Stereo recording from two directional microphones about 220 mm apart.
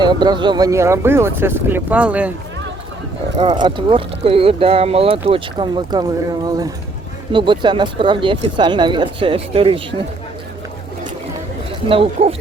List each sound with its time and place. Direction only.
0.0 s speech: 20° right (ahead or behind)
3.5 s speech: 20° right (ahead or behind)
11.9 s speech: 25° right (ahead or behind)